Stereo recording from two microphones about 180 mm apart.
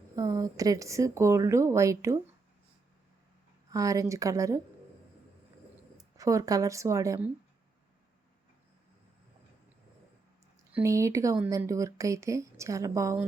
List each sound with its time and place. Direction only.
0.2 s speech: 20° right (ahead or behind)
3.7 s a woman's voice: 20° right (ahead or behind)
6.0 s speech: 20° right (ahead or behind)
10.7 s speech: 10° right (ahead or behind)